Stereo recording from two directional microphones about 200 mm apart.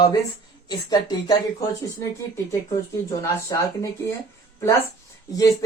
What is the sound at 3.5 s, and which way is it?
Speech, 15° left (ahead or behind).